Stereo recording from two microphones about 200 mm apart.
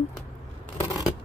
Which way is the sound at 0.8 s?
20° left (ahead or behind).